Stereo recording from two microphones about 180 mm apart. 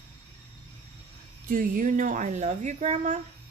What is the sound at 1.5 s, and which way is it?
Speech, 50° right (ahead or behind).